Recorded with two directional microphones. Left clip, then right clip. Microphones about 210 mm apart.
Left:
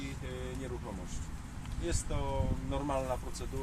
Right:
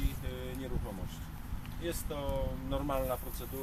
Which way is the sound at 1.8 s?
Centre (ahead or behind).